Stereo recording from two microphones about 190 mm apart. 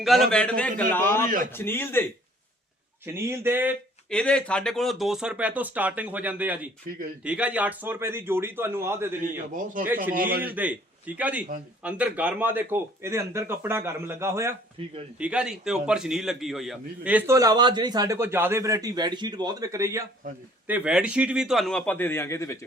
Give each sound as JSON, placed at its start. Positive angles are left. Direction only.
{"t": 0.0, "sound": "a man's voice", "side_deg": 0}
{"t": 3.1, "sound": "a man's voice", "side_deg": -15}
{"t": 4.1, "sound": "a man's voice", "side_deg": 5}
{"t": 10.2, "sound": "a man's voice", "side_deg": -50}
{"t": 10.4, "sound": "a man's voice", "side_deg": -10}
{"t": 14.8, "sound": "speech", "side_deg": -30}
{"t": 15.2, "sound": "a man's voice", "side_deg": -5}